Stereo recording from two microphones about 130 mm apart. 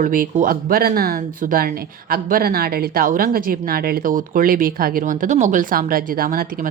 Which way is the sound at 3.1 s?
90° right.